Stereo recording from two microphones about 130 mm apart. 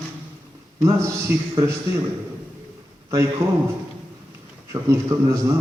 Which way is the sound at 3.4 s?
20° right (ahead or behind).